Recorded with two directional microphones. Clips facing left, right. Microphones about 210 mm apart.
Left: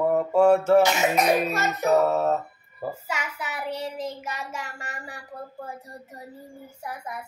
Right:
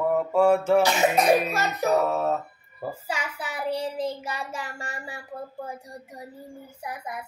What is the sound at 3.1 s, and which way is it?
Child singing, 30° right (ahead or behind).